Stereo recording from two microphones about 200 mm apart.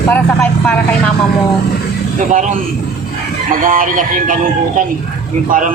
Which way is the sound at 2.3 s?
40° right (ahead or behind).